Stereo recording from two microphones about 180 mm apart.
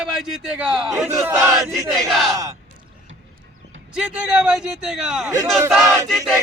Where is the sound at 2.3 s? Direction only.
20° right (ahead or behind).